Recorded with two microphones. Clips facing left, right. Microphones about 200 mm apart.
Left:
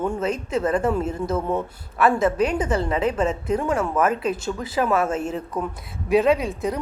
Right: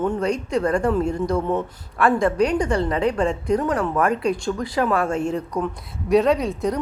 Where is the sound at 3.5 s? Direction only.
25° left (ahead or behind).